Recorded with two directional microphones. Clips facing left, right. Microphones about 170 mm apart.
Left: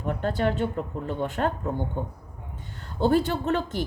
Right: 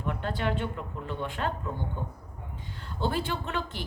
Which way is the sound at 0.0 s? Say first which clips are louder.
Left 5 dB; 40° left (ahead or behind).